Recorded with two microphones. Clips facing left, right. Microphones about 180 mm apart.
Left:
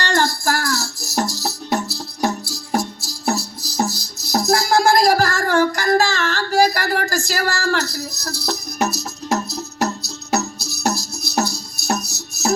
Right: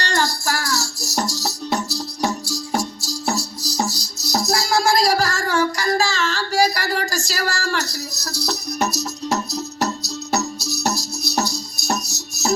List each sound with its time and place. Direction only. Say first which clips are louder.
0.0 s music: left 3 dB; 55° left (ahead or behind)
3.2 s music: left 3 dB; 55° left (ahead or behind)